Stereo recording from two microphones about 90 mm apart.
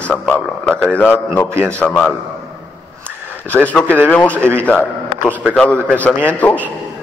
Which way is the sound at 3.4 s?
15° left (ahead or behind).